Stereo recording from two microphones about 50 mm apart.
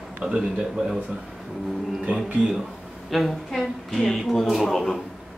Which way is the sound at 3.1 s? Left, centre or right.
Centre.